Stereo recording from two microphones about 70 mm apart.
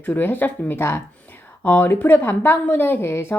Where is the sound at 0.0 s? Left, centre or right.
Left.